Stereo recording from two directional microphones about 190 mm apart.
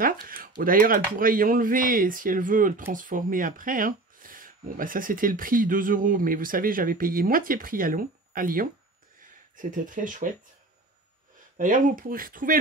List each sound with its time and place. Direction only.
0.0 s speech: 50° right (ahead or behind)
11.5 s speech: 45° right (ahead or behind)